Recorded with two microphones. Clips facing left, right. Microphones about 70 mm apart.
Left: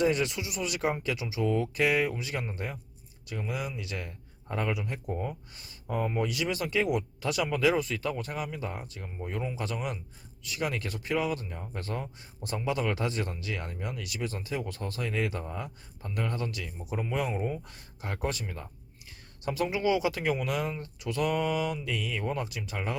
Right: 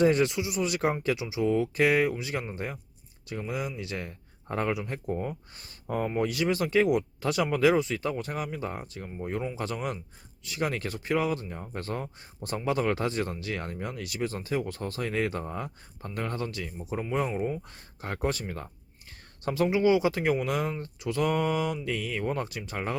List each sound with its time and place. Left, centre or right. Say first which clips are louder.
0.0 s speech: right 4 dB; right
5.5 s speech: right 1 dB; right
9.2 s speech: right 2 dB; centre
9.6 s speech: right 2 dB; right
17.7 s speech: right 2 dB; right
19.5 s speech: right 4 dB; right